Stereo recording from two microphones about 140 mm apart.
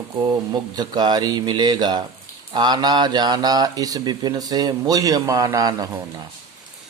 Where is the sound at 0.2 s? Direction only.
30° right (ahead or behind).